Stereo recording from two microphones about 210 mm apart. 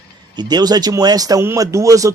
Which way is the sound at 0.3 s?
20° right (ahead or behind).